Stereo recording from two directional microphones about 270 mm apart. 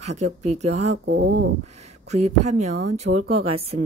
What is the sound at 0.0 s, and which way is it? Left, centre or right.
Speech, right.